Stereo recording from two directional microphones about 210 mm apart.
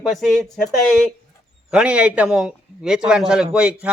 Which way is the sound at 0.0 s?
Centre (ahead or behind).